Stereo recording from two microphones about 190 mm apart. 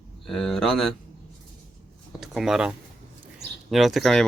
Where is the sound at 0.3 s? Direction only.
Centre (ahead or behind).